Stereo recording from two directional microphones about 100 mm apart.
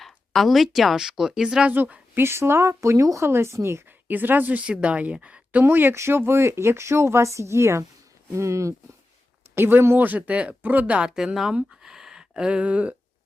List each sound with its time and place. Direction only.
0.0 s speech: centre (ahead or behind)
1.7 s a woman's voice: 20° right (ahead or behind)